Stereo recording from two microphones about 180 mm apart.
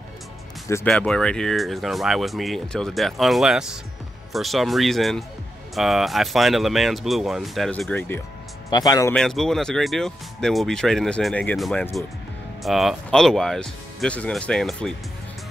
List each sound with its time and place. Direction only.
0.8 s speech: 5° left (ahead or behind)
8.6 s speech: 20° left (ahead or behind)
9.1 s speech: 5° left (ahead or behind)